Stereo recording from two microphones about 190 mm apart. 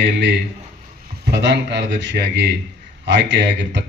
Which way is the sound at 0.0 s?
65° right (ahead or behind).